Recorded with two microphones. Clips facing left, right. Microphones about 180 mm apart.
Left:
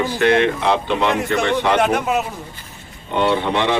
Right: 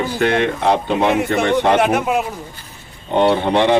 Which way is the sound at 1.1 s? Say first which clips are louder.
Right 2 dB; centre (ahead or behind).